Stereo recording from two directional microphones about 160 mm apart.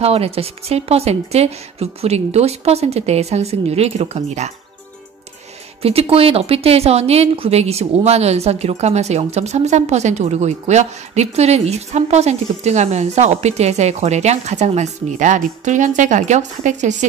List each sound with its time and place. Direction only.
0.0 s speech: 40° right (ahead or behind)
5.8 s a woman's voice: 40° right (ahead or behind)